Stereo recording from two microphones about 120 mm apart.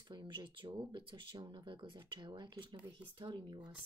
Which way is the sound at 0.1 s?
40° right (ahead or behind).